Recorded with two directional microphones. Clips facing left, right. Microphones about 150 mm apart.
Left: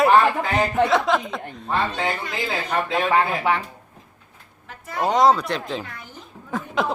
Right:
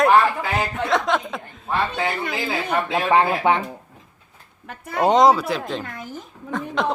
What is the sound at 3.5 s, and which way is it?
Speech, 20° right (ahead or behind).